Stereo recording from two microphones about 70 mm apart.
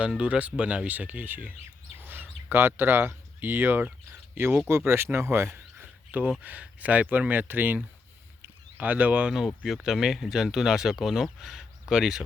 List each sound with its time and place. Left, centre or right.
0.2 s speech: centre
2.0 s bird: right
4.8 s speech: right
5.7 s a sound: right
6.4 s speech: right
8.8 s speech: right
9.6 s speech: centre